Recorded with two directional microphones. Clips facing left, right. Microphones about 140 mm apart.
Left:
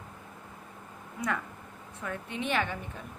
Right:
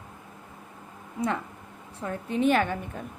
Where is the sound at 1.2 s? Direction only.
30° right (ahead or behind); by 2.8 s 45° right (ahead or behind).